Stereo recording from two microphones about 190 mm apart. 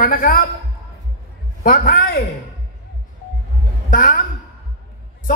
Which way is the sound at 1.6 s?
50° left (ahead or behind).